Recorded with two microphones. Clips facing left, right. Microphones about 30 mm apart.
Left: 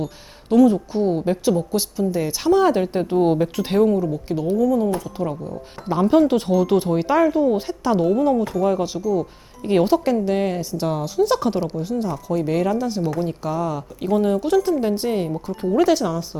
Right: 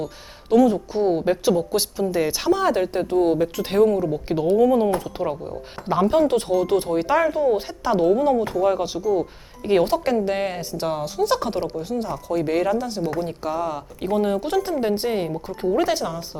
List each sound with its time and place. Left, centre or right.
0.5 s speech: centre
2.5 s speech: centre
4.1 s speech: right
4.5 s speech: right
6.0 s speech: centre